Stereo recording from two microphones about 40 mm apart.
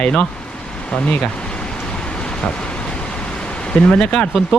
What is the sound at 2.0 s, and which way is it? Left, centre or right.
Vehicle, left.